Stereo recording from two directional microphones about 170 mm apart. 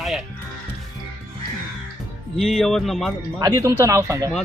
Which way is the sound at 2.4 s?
Centre (ahead or behind).